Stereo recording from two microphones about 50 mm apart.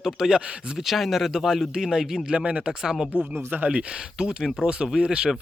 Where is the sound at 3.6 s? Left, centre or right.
Right.